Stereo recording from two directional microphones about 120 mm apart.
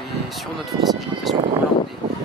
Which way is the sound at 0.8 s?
Centre (ahead or behind).